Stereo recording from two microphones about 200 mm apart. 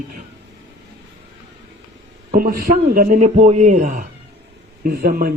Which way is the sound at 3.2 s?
30° right (ahead or behind).